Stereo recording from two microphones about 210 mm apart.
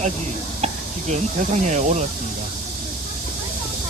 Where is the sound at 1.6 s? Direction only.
35° right (ahead or behind).